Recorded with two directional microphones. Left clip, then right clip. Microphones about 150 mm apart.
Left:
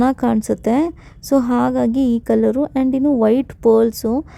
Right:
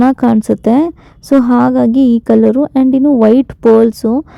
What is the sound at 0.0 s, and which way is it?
Speech, 35° right (ahead or behind).